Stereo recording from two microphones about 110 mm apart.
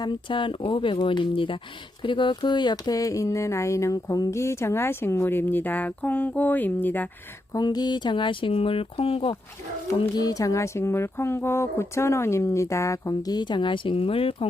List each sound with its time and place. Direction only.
0.0 s speech: 45° left (ahead or behind); by 7.1 s 15° left (ahead or behind)
7.5 s speech: 40° left (ahead or behind); by 9.3 s 60° left (ahead or behind)
10.2 s speech: 35° left (ahead or behind); by 14.4 s 55° left (ahead or behind)